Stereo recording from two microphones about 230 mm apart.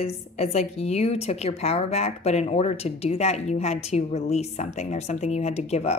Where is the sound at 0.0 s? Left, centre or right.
Left.